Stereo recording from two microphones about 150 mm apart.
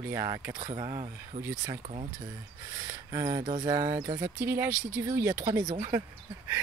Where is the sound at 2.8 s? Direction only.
20° right (ahead or behind).